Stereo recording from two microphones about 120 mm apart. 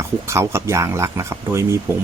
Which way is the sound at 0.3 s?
25° right (ahead or behind).